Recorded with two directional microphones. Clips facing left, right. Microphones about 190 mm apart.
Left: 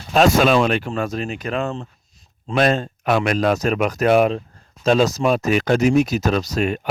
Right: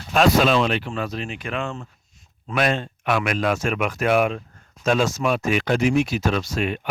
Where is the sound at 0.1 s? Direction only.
45° left (ahead or behind).